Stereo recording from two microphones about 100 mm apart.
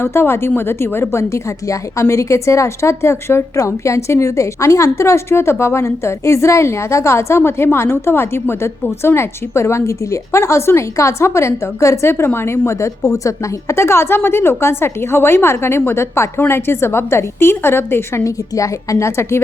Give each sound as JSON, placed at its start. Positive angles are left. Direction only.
{"t": 0.0, "sound": "a woman's voice", "side_deg": 25}